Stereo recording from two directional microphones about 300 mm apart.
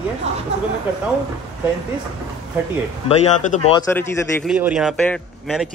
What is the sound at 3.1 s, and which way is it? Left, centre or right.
Speech, centre.